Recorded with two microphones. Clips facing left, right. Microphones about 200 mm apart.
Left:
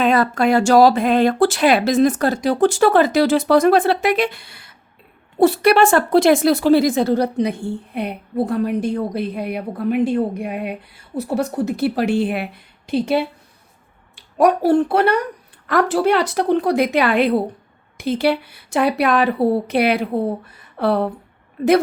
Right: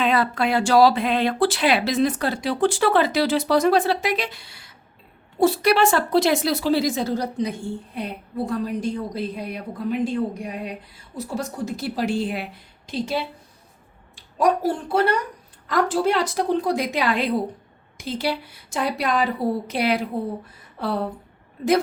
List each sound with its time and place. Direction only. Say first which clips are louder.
0.0 s a woman's voice: left 5 dB; 45° left (ahead or behind)
14.3 s a woman's voice: left 7 dB; 65° left (ahead or behind)
20.5 s a sound: left 7 dB; 65° left (ahead or behind)